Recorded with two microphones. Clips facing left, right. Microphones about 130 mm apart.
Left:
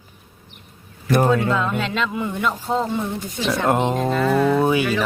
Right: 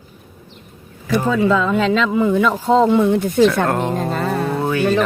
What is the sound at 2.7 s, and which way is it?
Speech, 75° right (ahead or behind).